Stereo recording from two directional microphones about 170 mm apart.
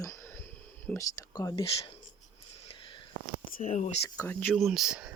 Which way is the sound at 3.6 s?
40° left (ahead or behind).